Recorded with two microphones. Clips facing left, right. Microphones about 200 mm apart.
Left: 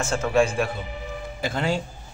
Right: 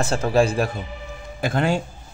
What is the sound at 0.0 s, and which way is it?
Speech, 35° right (ahead or behind).